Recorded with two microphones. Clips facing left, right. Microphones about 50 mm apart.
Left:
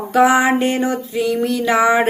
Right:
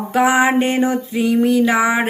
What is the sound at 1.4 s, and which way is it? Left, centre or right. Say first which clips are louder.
Speech: right 2 dB; centre.